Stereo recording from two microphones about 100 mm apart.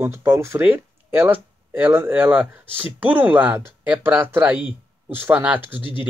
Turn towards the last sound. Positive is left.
turn(degrees=55)  # may be behind; listen again after turning